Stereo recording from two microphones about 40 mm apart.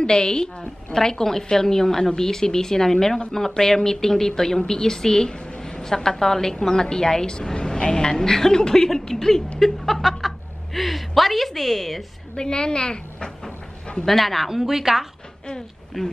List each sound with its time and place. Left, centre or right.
0.0 s a woman's voice: centre
12.4 s a sound: left
14.0 s speech: centre
14.5 s a woman's voice: centre
16.0 s speech: centre